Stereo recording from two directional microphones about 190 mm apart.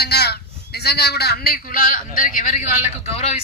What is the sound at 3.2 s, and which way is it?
Speech, 30° left (ahead or behind).